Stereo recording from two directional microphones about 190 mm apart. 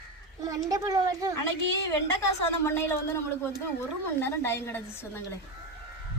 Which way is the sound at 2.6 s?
15° left (ahead or behind).